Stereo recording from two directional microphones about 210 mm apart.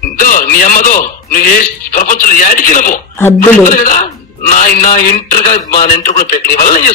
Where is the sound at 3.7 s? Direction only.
40° left (ahead or behind).